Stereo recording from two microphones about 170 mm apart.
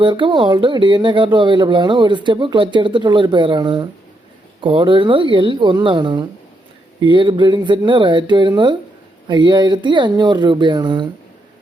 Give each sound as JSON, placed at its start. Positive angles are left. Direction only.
{"t": 0.0, "sound": "speech", "side_deg": -30}